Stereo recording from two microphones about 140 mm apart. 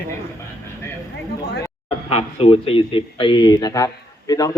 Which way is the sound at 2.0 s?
45° left (ahead or behind).